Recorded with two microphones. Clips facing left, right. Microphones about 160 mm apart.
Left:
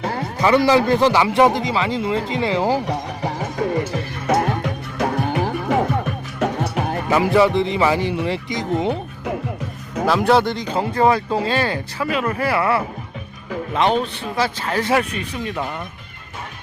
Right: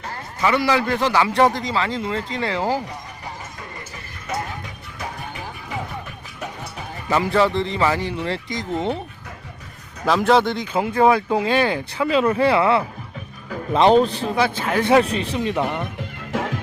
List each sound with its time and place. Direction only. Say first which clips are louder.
0.0 s speech: left 9 dB; 80° left
0.4 s a man's voice: left 4 dB; 30° left (ahead or behind)
1.2 s speech: left 2 dB; 20° left (ahead or behind)
2.8 s music: left 10 dB; 80° left
7.3 s speech: left 3 dB; 15° left (ahead or behind)
10.1 s speech: even; centre (ahead or behind); by 12.8 s 20° right (ahead or behind)
13.7 s a man's voice: right 5 dB; 35° right (ahead or behind)
14.3 s speech: even; 10° right (ahead or behind)
15.1 s a man's voice: right 4 dB; 30° right (ahead or behind)
16.3 s music: right 10 dB; 90° right